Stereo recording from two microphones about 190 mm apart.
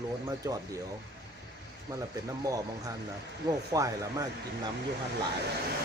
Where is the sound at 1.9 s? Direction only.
20° right (ahead or behind).